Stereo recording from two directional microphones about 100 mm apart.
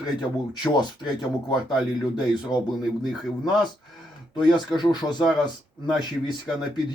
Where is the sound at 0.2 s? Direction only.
50° left (ahead or behind).